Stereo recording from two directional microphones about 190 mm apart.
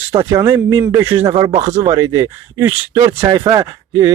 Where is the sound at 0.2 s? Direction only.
15° right (ahead or behind).